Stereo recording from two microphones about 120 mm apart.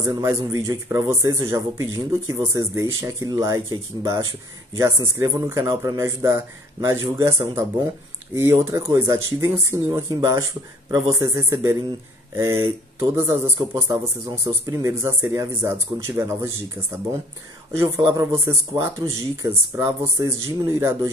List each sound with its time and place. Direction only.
0.0 s speech: 25° right (ahead or behind)
17.7 s speech: 25° right (ahead or behind)